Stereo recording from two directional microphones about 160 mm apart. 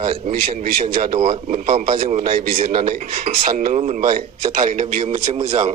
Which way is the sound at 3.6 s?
50° right (ahead or behind).